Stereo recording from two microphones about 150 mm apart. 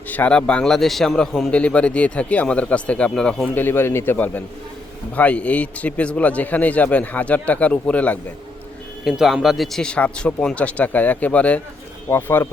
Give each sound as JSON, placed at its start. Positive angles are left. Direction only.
{"t": 0.1, "sound": "a man's voice", "side_deg": 10}
{"t": 9.0, "sound": "a man's voice", "side_deg": 0}